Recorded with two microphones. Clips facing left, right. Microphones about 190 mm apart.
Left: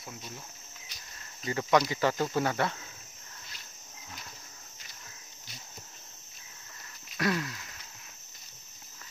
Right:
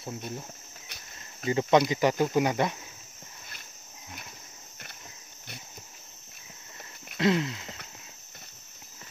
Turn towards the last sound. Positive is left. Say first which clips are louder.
# right 5 dB
turn(degrees=-25)  # may be behind; listen again after turning